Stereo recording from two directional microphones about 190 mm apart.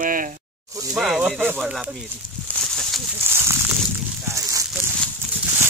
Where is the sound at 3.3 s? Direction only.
15° right (ahead or behind).